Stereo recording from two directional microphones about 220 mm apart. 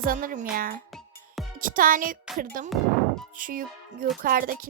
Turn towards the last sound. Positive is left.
turn(degrees=-40)  # may be behind; listen again after turning